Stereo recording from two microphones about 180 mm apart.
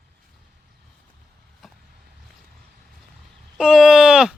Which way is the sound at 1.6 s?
Centre (ahead or behind).